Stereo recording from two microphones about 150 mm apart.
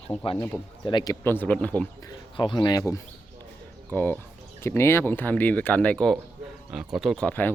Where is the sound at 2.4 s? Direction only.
30° left (ahead or behind).